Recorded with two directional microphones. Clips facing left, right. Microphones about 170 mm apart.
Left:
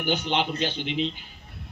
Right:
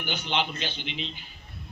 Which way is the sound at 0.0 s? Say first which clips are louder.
Left 4 dB; 45° left (ahead or behind).